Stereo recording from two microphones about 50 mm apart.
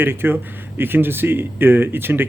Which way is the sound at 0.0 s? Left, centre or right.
Right.